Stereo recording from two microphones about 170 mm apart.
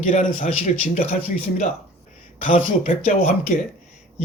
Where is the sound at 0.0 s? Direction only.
45° left (ahead or behind).